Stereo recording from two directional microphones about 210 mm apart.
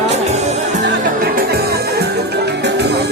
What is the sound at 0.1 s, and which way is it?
Music, 30° right (ahead or behind).